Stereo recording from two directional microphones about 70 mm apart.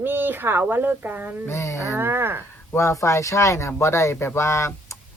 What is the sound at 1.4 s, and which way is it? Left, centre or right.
Speech, left.